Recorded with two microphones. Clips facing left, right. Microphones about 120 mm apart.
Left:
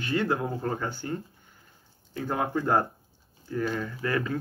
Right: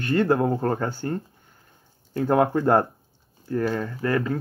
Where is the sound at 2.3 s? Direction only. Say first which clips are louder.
Right 7 dB; 55° right (ahead or behind).